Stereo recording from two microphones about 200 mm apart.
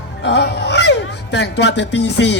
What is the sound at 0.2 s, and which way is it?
A man's voice, 60° left (ahead or behind).